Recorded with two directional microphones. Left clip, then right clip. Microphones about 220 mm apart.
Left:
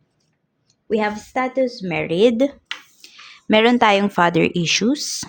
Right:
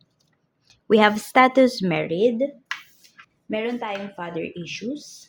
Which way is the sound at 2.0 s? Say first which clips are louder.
Left 6 dB; 20° left (ahead or behind).